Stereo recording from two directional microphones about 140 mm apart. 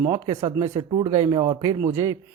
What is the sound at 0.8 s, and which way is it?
Speech, 35° right (ahead or behind).